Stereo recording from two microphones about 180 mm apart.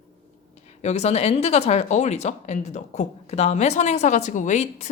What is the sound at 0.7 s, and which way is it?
Speech, 40° left (ahead or behind).